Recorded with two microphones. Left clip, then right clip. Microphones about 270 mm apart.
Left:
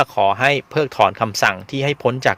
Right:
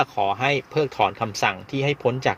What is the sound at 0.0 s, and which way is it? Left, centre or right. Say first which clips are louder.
Speech: left 6 dB; left.